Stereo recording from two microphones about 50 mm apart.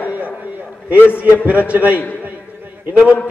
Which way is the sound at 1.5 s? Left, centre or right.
Right.